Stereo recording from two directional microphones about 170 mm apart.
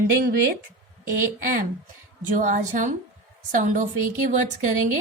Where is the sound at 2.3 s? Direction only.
45° right (ahead or behind).